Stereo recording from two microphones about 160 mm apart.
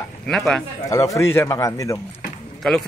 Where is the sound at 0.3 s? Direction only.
Centre (ahead or behind).